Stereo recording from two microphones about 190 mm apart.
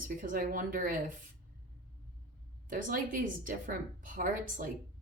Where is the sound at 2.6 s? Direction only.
45° right (ahead or behind).